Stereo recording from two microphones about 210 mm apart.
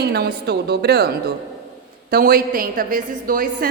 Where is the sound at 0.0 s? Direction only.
50° right (ahead or behind).